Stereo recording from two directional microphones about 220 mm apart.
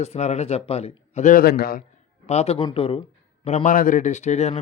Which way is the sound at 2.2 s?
30° left (ahead or behind).